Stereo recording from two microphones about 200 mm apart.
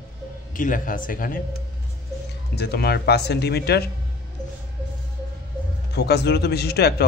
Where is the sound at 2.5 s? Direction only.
55° left (ahead or behind).